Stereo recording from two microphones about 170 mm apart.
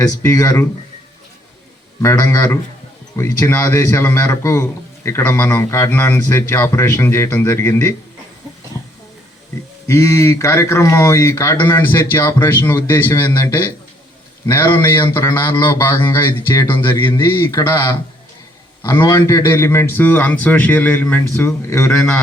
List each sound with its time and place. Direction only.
0.0 s speech: 20° left (ahead or behind)
2.0 s a man's voice: 15° left (ahead or behind)
9.8 s a man's voice: 15° left (ahead or behind)